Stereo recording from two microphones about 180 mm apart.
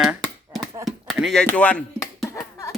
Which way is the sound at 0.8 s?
Centre (ahead or behind).